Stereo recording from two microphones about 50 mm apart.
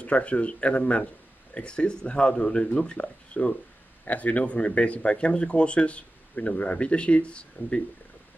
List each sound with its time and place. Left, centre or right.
0.0 s speech: left